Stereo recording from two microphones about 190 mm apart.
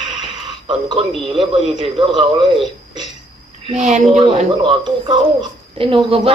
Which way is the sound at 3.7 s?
40° right (ahead or behind).